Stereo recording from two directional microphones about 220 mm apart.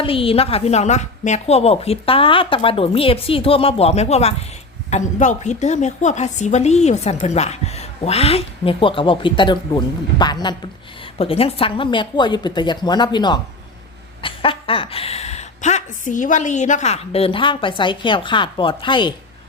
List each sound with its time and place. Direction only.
0.0 s a woman's voice: 25° left (ahead or behind)